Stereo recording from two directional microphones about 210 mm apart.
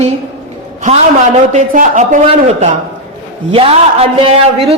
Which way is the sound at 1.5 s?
35° right (ahead or behind).